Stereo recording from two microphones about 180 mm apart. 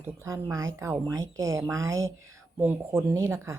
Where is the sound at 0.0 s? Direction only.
15° right (ahead or behind).